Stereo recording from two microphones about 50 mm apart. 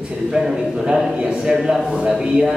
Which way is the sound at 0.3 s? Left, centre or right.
Centre.